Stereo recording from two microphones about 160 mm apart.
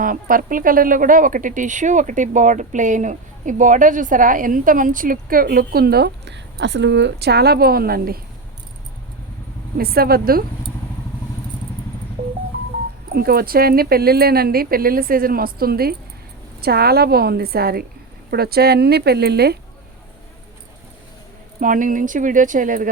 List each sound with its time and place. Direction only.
0.0 s speech: 60° right (ahead or behind)
9.7 s speech: 70° right (ahead or behind)
13.1 s speech: 70° right (ahead or behind); by 19.5 s 90° right
21.6 s speech: 55° right (ahead or behind)